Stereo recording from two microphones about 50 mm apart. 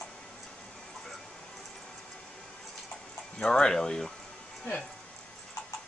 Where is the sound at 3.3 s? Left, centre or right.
Centre.